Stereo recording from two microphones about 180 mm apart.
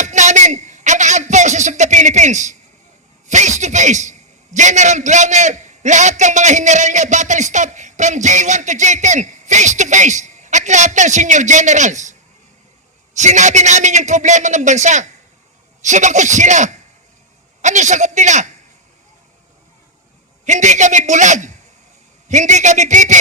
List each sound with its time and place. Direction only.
0.0 s a sound: 40° right (ahead or behind)
3.2 s a man's voice: 40° right (ahead or behind)
13.1 s a man's voice: 40° right (ahead or behind)
20.4 s a man's voice: 40° right (ahead or behind)